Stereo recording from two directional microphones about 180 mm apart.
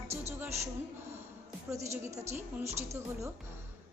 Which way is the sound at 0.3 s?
15° right (ahead or behind).